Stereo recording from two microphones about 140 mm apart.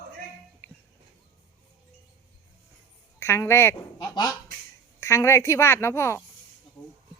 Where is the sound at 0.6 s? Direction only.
15° left (ahead or behind).